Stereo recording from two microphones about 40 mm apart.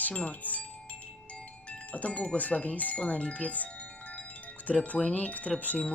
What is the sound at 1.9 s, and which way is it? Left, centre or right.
Chime, left.